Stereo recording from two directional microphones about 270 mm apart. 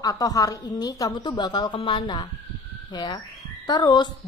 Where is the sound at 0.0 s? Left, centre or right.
Centre.